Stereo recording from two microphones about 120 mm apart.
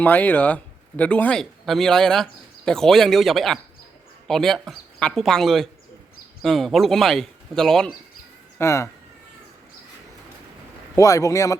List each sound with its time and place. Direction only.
0.0 s a man's voice: 15° left (ahead or behind)
8.5 s speech: 25° left (ahead or behind)
10.9 s a man's voice: 25° left (ahead or behind)